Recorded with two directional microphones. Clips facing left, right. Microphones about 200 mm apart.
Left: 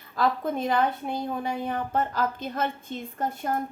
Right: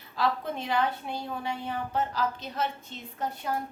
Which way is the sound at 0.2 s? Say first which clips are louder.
Left 4 dB; 50° left (ahead or behind).